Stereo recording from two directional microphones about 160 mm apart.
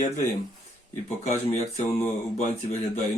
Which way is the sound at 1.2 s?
45° left (ahead or behind).